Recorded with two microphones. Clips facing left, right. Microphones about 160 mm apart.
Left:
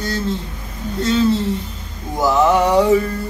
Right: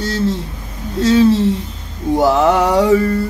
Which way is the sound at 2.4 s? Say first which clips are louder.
Right 1 dB; 90° right.